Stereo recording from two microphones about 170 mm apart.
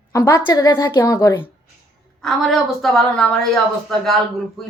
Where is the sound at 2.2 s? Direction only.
Centre (ahead or behind).